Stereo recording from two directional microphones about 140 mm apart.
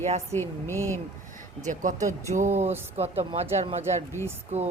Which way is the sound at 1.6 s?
60° right (ahead or behind).